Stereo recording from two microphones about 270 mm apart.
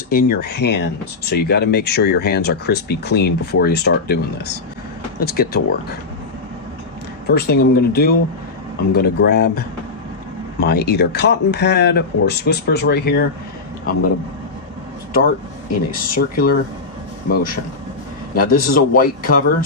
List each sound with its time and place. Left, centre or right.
0.1 s speech: left
7.2 s speech: left
15.9 s speech: left